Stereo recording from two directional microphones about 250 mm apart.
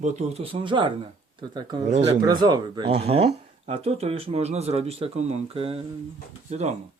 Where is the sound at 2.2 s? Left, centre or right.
Centre.